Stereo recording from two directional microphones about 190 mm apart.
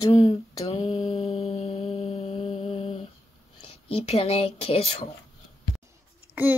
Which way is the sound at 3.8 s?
30° left (ahead or behind).